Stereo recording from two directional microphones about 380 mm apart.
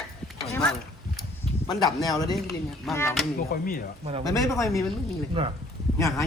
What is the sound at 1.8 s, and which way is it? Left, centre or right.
Speech, centre.